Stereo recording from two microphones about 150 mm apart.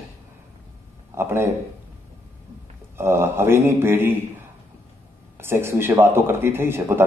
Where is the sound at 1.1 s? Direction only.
15° right (ahead or behind).